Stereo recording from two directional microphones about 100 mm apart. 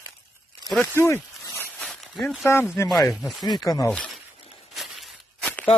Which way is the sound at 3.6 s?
35° left (ahead or behind).